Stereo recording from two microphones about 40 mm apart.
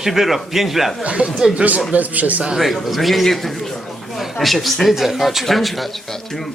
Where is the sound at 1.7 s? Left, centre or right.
Right.